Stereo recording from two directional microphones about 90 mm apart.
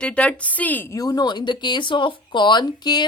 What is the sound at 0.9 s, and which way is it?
Speech, 40° left (ahead or behind).